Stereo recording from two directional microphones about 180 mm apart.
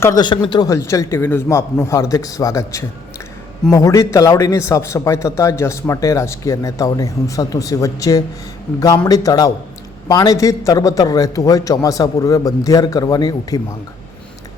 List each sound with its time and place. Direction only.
0.0 s a man's voice: 20° left (ahead or behind)